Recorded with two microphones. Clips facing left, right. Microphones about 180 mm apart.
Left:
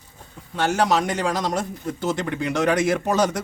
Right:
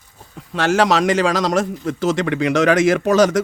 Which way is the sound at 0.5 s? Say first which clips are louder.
Right 4 dB; 90° right.